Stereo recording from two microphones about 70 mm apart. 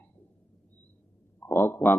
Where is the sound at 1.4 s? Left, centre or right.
Left.